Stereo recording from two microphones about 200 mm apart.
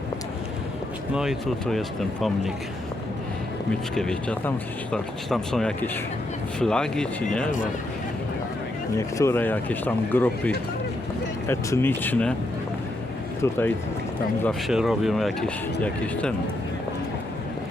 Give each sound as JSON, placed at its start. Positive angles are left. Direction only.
{"t": 1.1, "sound": "speech", "side_deg": 0}
{"t": 3.9, "sound": "speech", "side_deg": 5}
{"t": 9.0, "sound": "speech", "side_deg": 15}
{"t": 13.4, "sound": "speech", "side_deg": 10}
{"t": 14.4, "sound": "speech", "side_deg": 0}